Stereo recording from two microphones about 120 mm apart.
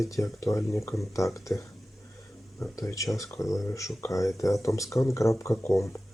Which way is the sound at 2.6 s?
30° left (ahead or behind).